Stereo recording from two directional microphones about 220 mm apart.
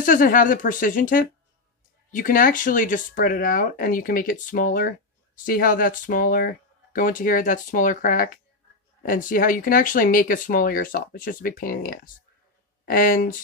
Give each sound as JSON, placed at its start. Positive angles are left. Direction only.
{"t": 0.0, "sound": "speech", "side_deg": 40}